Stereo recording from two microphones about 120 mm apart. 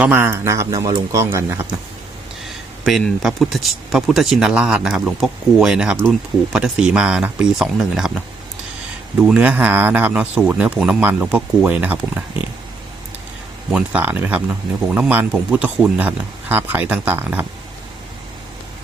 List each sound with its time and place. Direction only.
0.0 s speech: 20° right (ahead or behind)
2.4 s a sound: centre (ahead or behind)
3.0 s speech: centre (ahead or behind)
9.2 s speech: 10° right (ahead or behind)
13.7 s speech: 10° right (ahead or behind)